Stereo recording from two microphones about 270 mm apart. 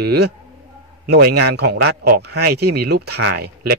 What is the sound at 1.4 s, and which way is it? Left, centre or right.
Speech, right.